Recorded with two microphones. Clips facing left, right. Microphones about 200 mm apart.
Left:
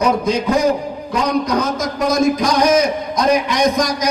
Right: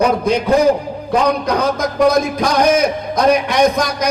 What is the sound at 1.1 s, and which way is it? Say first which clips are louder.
A man's voice: right 2 dB; 60° right (ahead or behind).